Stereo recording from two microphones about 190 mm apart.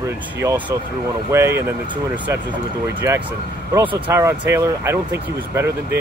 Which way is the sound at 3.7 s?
10° right (ahead or behind).